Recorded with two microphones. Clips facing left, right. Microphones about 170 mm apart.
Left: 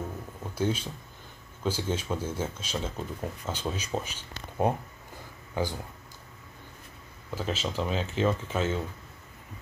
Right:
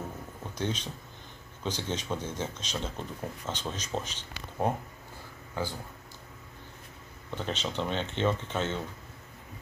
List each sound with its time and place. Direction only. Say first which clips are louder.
0.6 s speech: left 4 dB; 5° left (ahead or behind)
5.6 s speech: left 4 dB; 15° left (ahead or behind)
7.2 s speech: left 2 dB; 5° left (ahead or behind)